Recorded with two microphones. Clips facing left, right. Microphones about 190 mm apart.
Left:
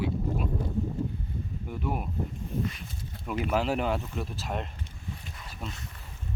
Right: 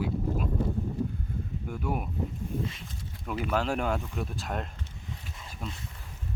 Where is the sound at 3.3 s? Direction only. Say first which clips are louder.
Left 1 dB; 5° left (ahead or behind).